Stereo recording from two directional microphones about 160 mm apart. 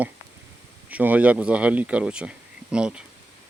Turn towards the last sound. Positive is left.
turn(degrees=-5)  # may be behind; listen again after turning